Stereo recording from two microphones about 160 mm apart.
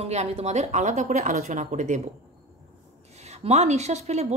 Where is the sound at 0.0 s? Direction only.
40° right (ahead or behind).